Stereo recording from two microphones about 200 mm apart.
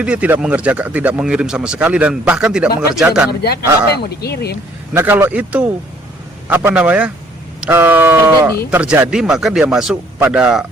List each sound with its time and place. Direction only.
0.0 s speech: 5° right (ahead or behind)
3.9 s speech: 55° left (ahead or behind)
4.9 s speech: 10° right (ahead or behind)